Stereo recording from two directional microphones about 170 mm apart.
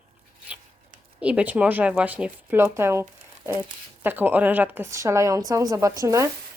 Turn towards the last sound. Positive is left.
turn(degrees=-20)  # may be behind; listen again after turning